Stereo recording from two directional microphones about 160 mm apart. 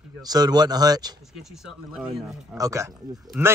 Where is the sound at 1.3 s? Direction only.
Centre (ahead or behind).